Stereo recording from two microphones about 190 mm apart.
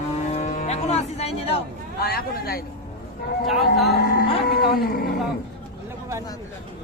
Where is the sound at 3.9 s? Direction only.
50° left (ahead or behind).